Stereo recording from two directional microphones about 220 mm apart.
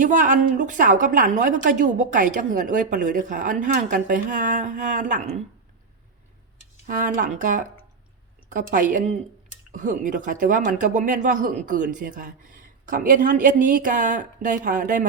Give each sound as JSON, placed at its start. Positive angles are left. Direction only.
{"t": 0.0, "sound": "speech", "side_deg": -35}
{"t": 6.8, "sound": "speech", "side_deg": -40}